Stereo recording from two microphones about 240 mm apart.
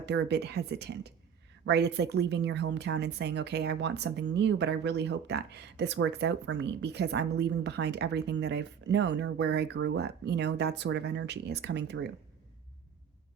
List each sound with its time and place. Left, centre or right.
0.0 s speech: right